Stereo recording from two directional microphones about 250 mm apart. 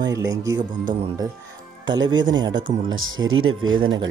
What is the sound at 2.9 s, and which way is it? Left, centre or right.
Speech, right.